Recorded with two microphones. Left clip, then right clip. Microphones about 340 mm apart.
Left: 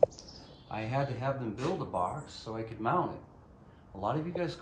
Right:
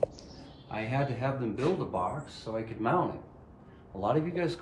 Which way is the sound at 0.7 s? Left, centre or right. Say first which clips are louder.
Right 2 dB; centre.